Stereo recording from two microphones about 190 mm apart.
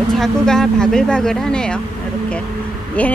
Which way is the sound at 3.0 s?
10° left (ahead or behind).